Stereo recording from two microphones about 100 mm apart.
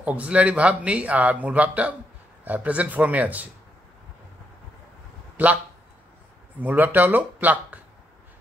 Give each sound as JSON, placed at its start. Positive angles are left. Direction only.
{"t": 0.0, "sound": "speech", "side_deg": -15}
{"t": 5.4, "sound": "speech", "side_deg": -15}
{"t": 6.6, "sound": "speech", "side_deg": -15}